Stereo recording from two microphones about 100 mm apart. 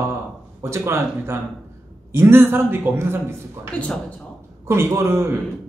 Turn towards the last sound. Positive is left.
turn(degrees=-25)  # may be behind; listen again after turning